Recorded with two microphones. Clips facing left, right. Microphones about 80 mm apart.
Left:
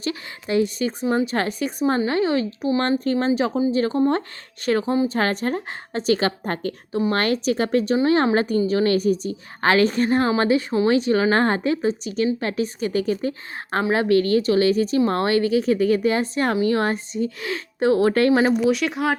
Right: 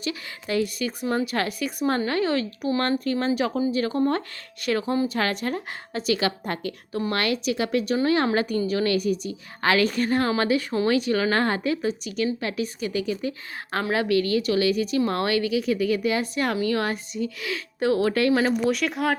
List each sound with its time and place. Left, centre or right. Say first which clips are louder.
0.0 s a woman's voice: left 3 dB; left
18.6 s speech: left 3 dB; centre